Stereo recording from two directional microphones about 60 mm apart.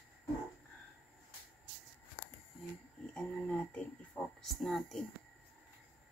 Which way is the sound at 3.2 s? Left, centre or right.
Centre.